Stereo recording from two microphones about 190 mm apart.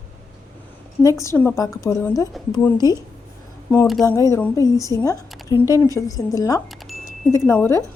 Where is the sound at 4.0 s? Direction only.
15° left (ahead or behind).